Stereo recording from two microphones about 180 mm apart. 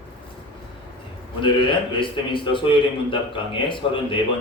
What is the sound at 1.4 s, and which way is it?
Speech, 25° left (ahead or behind).